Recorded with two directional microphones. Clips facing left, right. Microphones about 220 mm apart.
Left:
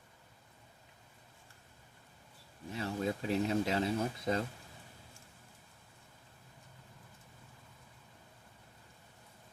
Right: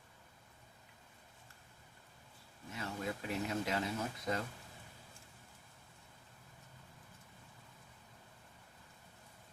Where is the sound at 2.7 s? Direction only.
30° left (ahead or behind).